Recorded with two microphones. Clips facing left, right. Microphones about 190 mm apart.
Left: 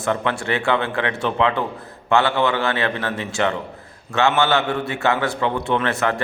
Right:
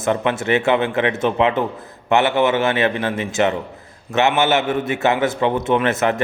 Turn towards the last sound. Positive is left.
turn(degrees=-20)  # may be behind; listen again after turning